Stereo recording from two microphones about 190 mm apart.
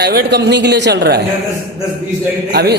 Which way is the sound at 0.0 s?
60° right (ahead or behind).